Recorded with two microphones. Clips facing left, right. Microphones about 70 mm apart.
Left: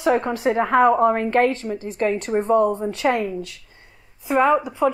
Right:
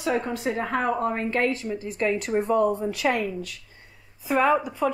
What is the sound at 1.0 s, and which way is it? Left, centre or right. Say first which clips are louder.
A woman's voice: left 7 dB; left.